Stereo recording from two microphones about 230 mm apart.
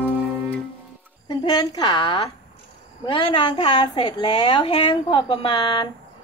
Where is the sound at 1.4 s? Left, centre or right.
Centre.